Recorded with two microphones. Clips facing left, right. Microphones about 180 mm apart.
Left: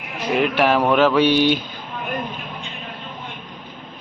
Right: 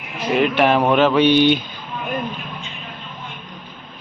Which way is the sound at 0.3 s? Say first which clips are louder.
Right 2 dB; 5° left (ahead or behind).